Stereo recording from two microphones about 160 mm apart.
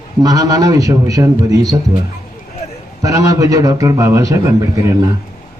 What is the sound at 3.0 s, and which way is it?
A man's voice, 20° right (ahead or behind).